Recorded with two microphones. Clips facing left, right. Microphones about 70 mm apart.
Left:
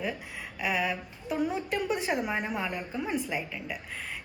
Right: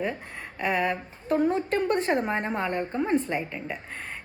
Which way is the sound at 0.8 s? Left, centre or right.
Right.